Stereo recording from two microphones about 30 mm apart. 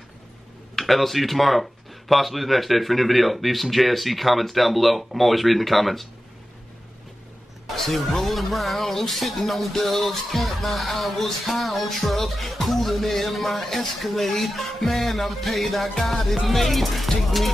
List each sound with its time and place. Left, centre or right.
0.7 s speech: centre
7.7 s speech: centre